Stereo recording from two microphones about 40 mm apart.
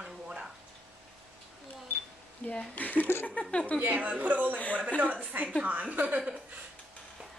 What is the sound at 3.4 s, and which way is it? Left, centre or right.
Speech, centre.